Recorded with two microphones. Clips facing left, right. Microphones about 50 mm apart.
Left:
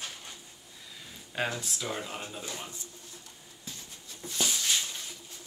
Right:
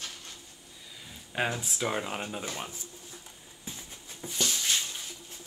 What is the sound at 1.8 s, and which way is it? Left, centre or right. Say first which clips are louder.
Speech: right 4 dB; right.